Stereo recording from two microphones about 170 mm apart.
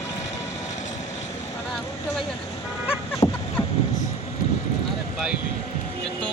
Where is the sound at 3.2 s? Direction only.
25° left (ahead or behind).